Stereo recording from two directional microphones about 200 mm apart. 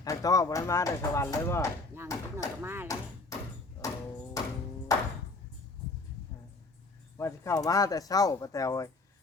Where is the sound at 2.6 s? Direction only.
10° right (ahead or behind).